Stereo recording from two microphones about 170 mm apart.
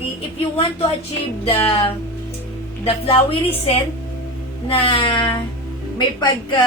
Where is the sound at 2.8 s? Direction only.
35° left (ahead or behind).